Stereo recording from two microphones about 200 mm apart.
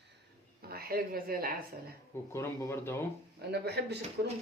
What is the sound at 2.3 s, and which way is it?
Speech, 10° left (ahead or behind).